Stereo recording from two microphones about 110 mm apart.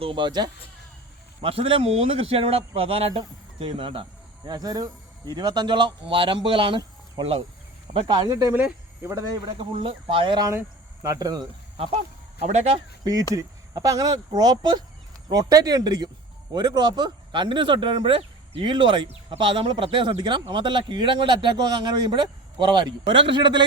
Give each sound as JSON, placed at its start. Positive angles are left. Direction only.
{"t": 0.0, "sound": "speech", "side_deg": -50}
{"t": 1.4, "sound": "speech", "side_deg": -55}
{"t": 4.4, "sound": "speech", "side_deg": -35}
{"t": 7.9, "sound": "speech", "side_deg": -45}
{"t": 9.5, "sound": "speech", "side_deg": -55}
{"t": 11.0, "sound": "speech", "side_deg": -35}
{"t": 12.4, "sound": "speech", "side_deg": -80}
{"t": 13.3, "sound": "speech", "side_deg": -30}